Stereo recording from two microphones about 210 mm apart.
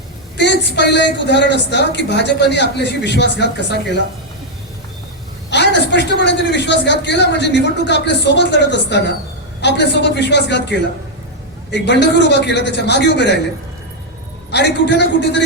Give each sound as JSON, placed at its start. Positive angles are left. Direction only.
{"t": 0.3, "sound": "a man's voice", "side_deg": 55}
{"t": 5.5, "sound": "a man's voice", "side_deg": 55}
{"t": 14.5, "sound": "a man's voice", "side_deg": 55}